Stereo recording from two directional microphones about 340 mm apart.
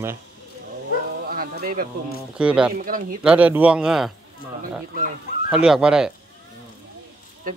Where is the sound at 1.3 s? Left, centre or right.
Right.